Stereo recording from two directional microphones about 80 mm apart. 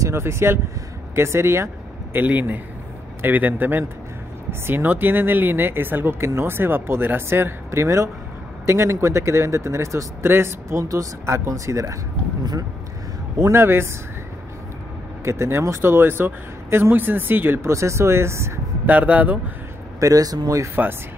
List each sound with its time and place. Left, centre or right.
0.0 s speech: right
2.1 s speech: right
13.5 s speech: right
15.2 s speech: right
18.9 s speech: centre
20.0 s speech: right